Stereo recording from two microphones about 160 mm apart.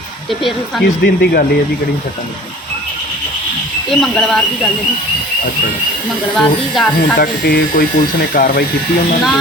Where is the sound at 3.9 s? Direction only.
5° left (ahead or behind).